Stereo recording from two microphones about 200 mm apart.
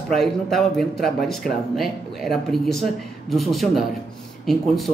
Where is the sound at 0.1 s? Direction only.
Centre (ahead or behind).